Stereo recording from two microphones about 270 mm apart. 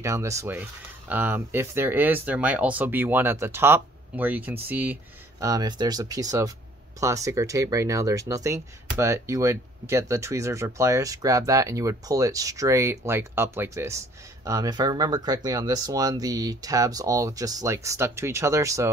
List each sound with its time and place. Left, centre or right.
0.0 s speech: centre